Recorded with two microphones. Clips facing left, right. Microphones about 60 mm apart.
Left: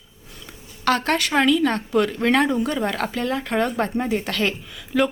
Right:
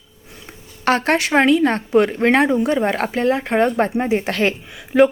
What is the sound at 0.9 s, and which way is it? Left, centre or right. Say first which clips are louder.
A woman's voice: right 4 dB; right.